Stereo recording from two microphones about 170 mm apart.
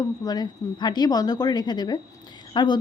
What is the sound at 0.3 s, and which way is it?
Speech, 25° left (ahead or behind).